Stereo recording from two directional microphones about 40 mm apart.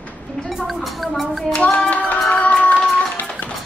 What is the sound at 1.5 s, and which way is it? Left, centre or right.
Music, left.